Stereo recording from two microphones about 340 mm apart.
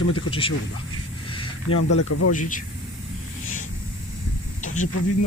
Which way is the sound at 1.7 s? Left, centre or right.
Left.